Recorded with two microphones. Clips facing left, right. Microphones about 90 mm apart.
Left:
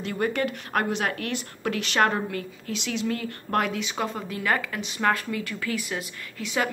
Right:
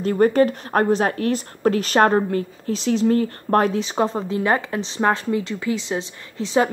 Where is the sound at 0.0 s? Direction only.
40° right (ahead or behind).